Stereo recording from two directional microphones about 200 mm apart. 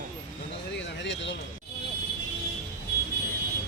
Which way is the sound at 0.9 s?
60° left (ahead or behind).